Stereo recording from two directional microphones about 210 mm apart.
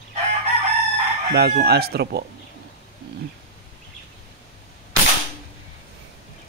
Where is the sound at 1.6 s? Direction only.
50° right (ahead or behind).